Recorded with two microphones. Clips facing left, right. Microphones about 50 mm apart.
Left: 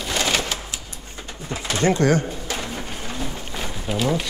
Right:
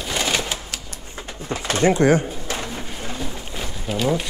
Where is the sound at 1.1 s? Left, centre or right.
Right.